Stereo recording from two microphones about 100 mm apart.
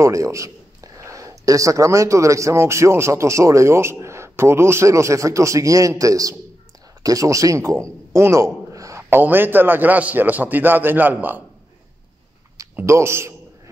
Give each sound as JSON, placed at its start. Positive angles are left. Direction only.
{"t": 0.0, "sound": "a man's voice", "side_deg": -30}
{"t": 8.1, "sound": "a sound", "side_deg": -30}
{"t": 9.1, "sound": "a man's voice", "side_deg": -20}
{"t": 12.8, "sound": "a man's voice", "side_deg": -25}